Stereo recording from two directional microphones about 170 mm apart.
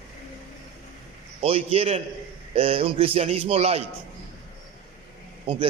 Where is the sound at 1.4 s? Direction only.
35° right (ahead or behind).